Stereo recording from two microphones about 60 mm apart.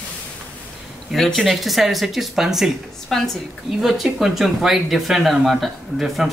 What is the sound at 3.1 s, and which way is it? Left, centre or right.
Speech, centre.